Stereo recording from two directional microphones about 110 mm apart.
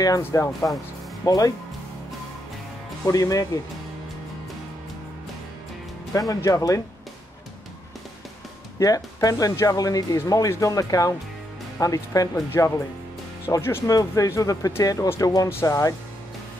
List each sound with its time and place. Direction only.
0.2 s speech: 25° left (ahead or behind)
3.1 s speech: 30° left (ahead or behind)
6.1 s speech: 30° left (ahead or behind)
8.7 s speech: 35° left (ahead or behind)